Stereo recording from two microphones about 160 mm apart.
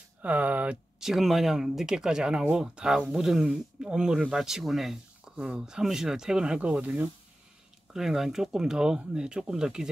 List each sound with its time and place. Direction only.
0.2 s speech: 10° right (ahead or behind)